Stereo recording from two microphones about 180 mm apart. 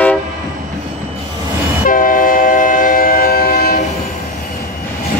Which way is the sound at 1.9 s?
50° left (ahead or behind).